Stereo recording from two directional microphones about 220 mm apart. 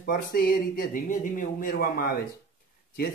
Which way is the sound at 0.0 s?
45° left (ahead or behind).